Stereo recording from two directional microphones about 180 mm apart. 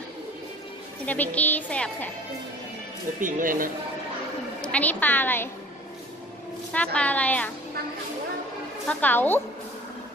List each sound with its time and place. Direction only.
1.0 s a woman's voice: 10° left (ahead or behind)
3.2 s speech: 50° right (ahead or behind)
4.6 s a woman's voice: 5° left (ahead or behind)
6.7 s a woman's voice: 5° left (ahead or behind)
8.8 s a woman's voice: 10° left (ahead or behind)